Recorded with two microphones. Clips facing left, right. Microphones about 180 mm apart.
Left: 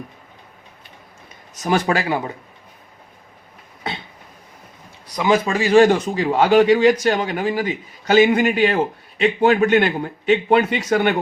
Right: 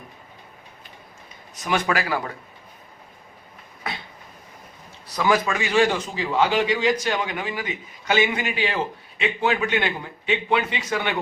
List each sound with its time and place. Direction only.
1.6 s speech: 30° left (ahead or behind)
5.1 s a man's voice: 20° left (ahead or behind); by 11.2 s 50° left (ahead or behind)